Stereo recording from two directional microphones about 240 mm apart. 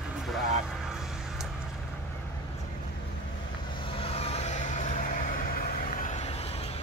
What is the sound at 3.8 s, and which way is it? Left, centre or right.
Vehicle, left.